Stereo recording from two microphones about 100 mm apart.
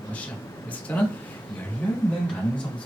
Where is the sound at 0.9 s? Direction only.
20° left (ahead or behind).